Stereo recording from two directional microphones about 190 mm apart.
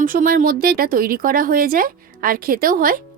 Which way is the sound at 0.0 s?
45° right (ahead or behind).